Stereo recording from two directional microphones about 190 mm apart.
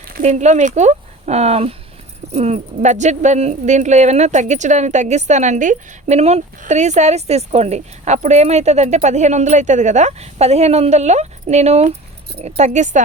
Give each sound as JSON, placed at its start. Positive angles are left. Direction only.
{"t": 0.1, "sound": "speech", "side_deg": -40}